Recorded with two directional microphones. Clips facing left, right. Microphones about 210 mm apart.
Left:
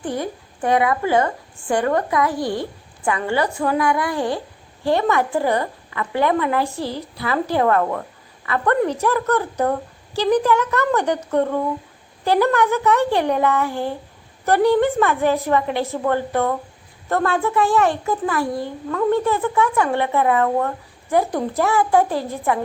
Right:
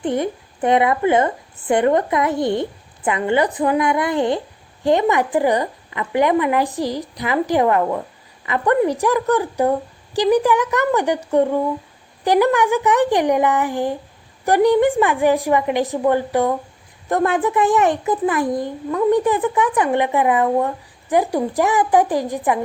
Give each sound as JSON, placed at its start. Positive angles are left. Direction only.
{"t": 0.0, "sound": "a child's voice", "side_deg": -20}